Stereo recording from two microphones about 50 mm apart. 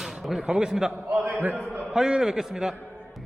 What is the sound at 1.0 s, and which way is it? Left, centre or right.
Speech, right.